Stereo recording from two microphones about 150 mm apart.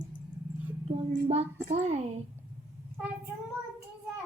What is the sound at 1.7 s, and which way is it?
Speech, 45° right (ahead or behind).